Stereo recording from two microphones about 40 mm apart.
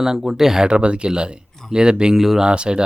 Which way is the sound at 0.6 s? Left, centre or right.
Right.